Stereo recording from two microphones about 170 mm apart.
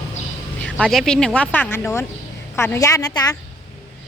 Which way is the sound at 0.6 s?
5° left (ahead or behind).